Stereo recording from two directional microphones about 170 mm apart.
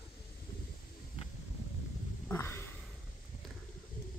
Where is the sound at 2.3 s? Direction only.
15° left (ahead or behind).